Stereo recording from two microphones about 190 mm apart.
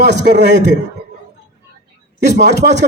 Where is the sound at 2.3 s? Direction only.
65° right (ahead or behind).